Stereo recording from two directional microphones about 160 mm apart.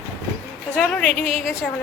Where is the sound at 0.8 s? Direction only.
Centre (ahead or behind).